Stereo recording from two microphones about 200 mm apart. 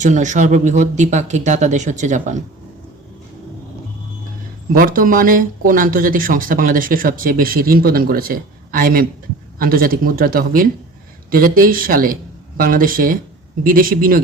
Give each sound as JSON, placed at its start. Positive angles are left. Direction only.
{"t": 0.0, "sound": "speech", "side_deg": -35}
{"t": 4.7, "sound": "speech", "side_deg": -45}